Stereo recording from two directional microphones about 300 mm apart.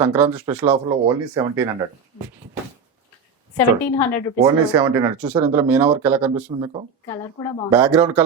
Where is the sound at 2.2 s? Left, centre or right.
Centre.